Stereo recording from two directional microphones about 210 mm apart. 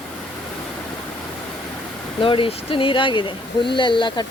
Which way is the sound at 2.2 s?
25° left (ahead or behind).